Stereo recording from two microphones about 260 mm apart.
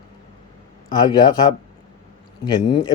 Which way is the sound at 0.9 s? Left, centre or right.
Centre.